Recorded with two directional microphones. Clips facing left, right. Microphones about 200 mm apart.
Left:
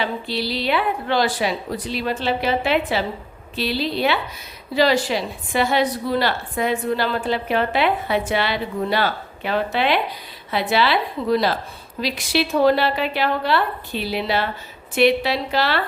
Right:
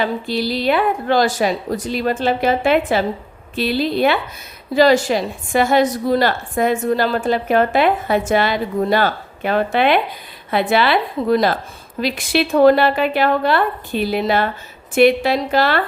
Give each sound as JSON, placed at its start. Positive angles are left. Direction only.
{"t": 0.0, "sound": "a woman's voice", "side_deg": -45}